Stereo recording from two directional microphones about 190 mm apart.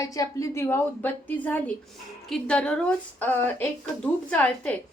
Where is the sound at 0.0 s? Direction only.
15° left (ahead or behind).